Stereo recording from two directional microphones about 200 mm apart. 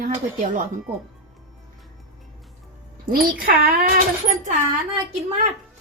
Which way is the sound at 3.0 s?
45° right (ahead or behind).